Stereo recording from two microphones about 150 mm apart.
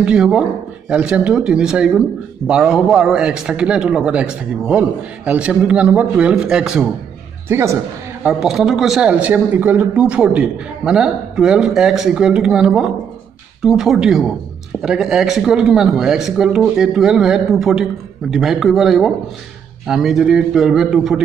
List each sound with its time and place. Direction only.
0.0 s speech: 5° right (ahead or behind)
7.4 s speech: 15° right (ahead or behind)
8.2 s speech: 5° right (ahead or behind)